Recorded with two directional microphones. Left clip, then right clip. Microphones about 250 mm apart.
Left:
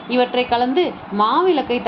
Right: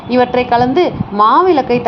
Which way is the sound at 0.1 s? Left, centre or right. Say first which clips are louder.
Right 6 dB; right.